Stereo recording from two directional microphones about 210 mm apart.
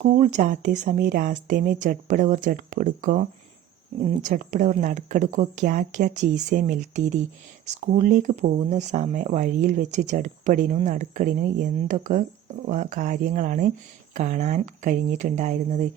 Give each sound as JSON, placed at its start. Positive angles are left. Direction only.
{"t": 0.0, "sound": "speech", "side_deg": -35}
{"t": 4.3, "sound": "speech", "side_deg": -40}